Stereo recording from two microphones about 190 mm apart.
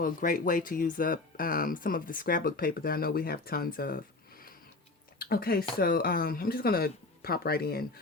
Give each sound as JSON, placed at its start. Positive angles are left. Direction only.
{"t": 0.0, "sound": "speech", "side_deg": 45}
{"t": 5.2, "sound": "speech", "side_deg": 50}